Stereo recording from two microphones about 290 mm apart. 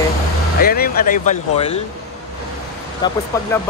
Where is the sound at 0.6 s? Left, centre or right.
Left.